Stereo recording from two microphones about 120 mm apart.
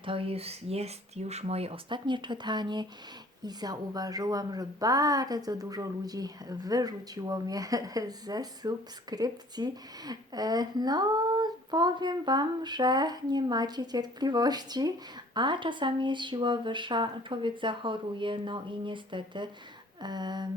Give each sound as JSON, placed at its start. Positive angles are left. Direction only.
{"t": 0.0, "sound": "a woman's voice", "side_deg": -50}